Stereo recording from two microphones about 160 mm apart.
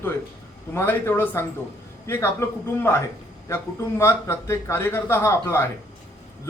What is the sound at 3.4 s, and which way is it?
A man's voice, 15° left (ahead or behind).